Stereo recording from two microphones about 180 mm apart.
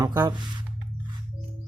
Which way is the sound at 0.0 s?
20° right (ahead or behind).